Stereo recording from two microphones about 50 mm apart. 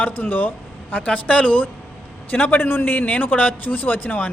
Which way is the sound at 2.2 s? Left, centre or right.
Left.